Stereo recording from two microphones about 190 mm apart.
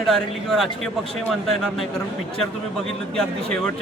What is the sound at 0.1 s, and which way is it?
A man's voice, centre (ahead or behind).